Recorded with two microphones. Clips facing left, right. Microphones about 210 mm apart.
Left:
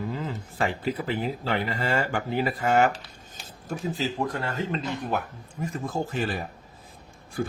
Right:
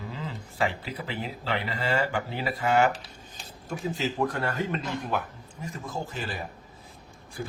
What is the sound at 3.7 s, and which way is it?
Speech, 35° left (ahead or behind).